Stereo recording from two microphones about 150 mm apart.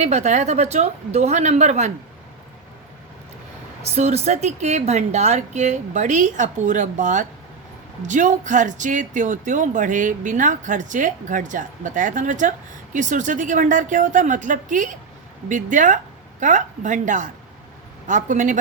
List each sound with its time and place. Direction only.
0.0 s speech: 50° right (ahead or behind)
3.8 s speech: 45° right (ahead or behind)